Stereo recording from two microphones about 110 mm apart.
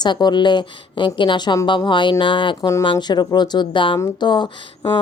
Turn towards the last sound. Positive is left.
turn(degrees=45)  # may be behind; listen again after turning